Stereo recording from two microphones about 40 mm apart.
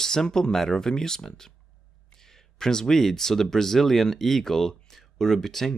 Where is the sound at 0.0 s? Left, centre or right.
Centre.